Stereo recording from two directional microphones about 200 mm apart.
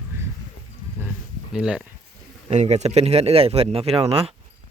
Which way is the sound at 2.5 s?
35° right (ahead or behind).